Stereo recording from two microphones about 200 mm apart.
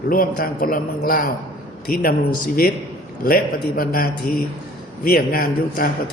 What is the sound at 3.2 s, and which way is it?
A man's voice, 45° left (ahead or behind).